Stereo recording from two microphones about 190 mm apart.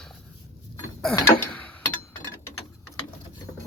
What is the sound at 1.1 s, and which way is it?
Mechanisms, 20° left (ahead or behind).